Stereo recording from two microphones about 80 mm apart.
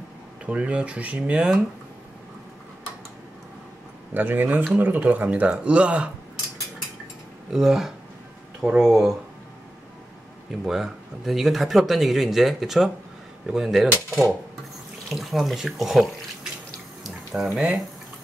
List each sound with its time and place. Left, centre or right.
0.5 s speech: centre
4.1 s speech: right
7.5 s speech: centre
10.5 s speech: centre
17.0 s water: centre
17.6 s speech: centre